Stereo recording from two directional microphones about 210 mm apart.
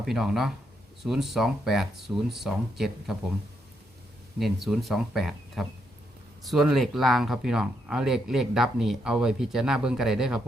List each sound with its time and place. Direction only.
0.0 s speech: centre (ahead or behind)
4.4 s speech: centre (ahead or behind)